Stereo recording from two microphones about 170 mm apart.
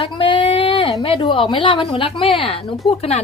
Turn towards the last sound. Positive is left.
turn(degrees=40)  # may be behind; listen again after turning